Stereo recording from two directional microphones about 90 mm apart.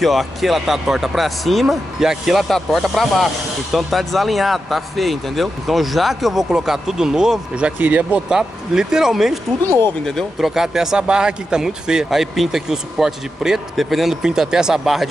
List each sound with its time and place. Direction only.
0.0 s speech: centre (ahead or behind)
7.8 s speech: 20° right (ahead or behind)
8.3 s speech: 5° right (ahead or behind)